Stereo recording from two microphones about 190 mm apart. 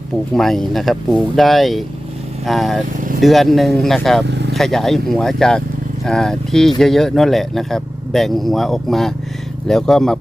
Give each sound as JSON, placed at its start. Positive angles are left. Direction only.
{"t": 0.3, "sound": "speech", "side_deg": 0}
{"t": 4.3, "sound": "speech", "side_deg": -65}
{"t": 4.5, "sound": "speech", "side_deg": 0}